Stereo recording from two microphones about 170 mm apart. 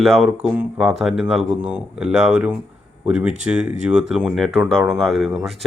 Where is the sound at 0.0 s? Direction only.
Centre (ahead or behind).